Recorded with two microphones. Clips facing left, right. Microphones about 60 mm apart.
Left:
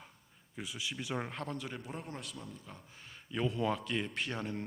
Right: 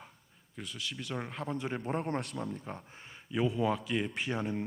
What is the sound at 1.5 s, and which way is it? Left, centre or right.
Speech, right.